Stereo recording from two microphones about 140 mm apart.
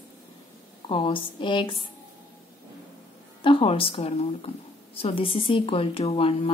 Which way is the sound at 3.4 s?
40° left (ahead or behind).